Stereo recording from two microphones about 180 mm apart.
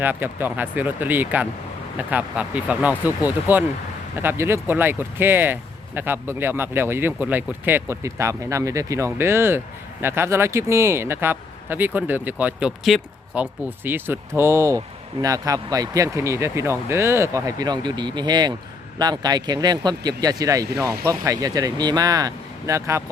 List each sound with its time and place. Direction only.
0.0 s speech: 10° right (ahead or behind)